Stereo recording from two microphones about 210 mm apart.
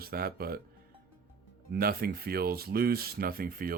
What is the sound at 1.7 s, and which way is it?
Speech, 45° right (ahead or behind).